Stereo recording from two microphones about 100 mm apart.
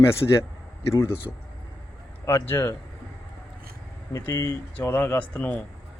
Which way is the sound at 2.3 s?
25° left (ahead or behind).